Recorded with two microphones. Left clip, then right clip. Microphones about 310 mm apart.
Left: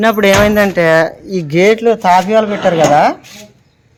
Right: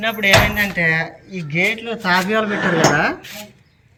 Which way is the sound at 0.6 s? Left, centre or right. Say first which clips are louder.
Left 7 dB; left.